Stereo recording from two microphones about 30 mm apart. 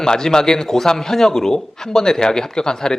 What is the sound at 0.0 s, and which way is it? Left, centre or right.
A man's voice, left.